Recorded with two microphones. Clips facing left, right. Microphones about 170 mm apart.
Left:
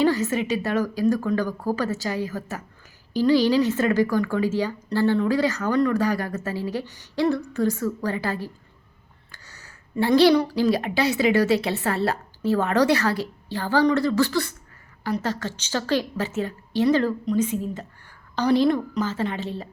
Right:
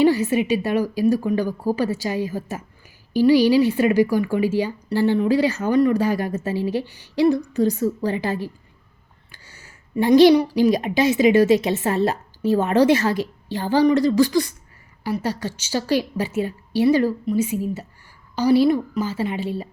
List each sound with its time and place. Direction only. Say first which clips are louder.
0.0 s a woman's voice: right 4 dB; 15° right (ahead or behind)
9.6 s a woman's voice: right 2 dB; 15° right (ahead or behind)